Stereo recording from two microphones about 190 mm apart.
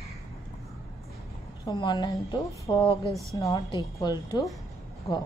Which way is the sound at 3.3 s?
20° left (ahead or behind).